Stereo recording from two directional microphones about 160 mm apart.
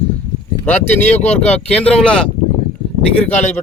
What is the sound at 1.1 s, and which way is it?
Speech, 40° left (ahead or behind).